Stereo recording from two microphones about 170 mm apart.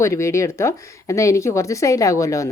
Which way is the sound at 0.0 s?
15° left (ahead or behind).